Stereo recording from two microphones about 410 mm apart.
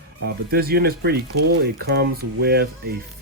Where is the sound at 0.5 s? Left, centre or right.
Right.